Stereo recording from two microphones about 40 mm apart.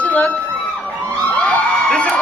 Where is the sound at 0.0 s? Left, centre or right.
Left.